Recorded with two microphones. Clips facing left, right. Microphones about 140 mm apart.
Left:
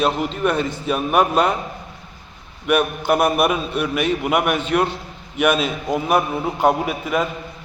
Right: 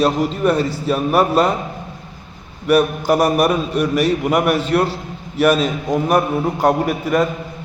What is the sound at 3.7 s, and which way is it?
Speech, 40° right (ahead or behind).